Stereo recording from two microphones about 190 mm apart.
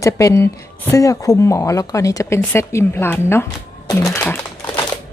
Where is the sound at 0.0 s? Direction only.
15° left (ahead or behind).